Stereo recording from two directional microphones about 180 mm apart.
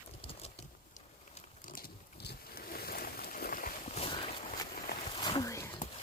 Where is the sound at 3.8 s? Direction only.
35° left (ahead or behind); by 5.7 s 15° left (ahead or behind).